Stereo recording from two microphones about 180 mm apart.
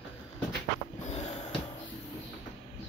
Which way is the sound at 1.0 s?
40° left (ahead or behind).